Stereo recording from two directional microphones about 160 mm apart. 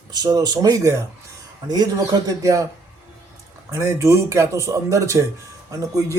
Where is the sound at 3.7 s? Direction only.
20° right (ahead or behind).